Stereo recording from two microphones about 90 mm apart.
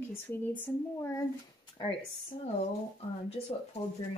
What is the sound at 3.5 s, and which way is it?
Speech, 90° left.